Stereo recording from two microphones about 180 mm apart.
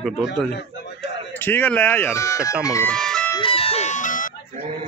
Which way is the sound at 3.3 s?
30° left (ahead or behind).